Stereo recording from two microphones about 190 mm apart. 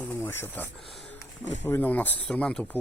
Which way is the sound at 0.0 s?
10° left (ahead or behind).